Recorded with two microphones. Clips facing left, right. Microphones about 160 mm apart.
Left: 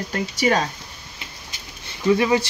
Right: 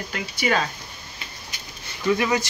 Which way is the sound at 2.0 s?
25° left (ahead or behind).